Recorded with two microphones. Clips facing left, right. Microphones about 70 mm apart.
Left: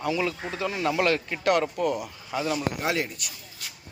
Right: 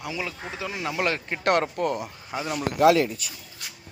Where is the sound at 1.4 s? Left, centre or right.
Right.